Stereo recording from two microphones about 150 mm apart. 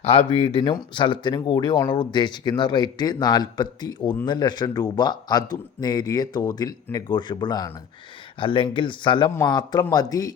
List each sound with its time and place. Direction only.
0.0 s speech: 40° left (ahead or behind)